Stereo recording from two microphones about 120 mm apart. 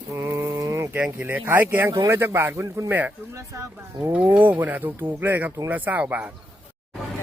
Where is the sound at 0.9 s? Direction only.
15° right (ahead or behind).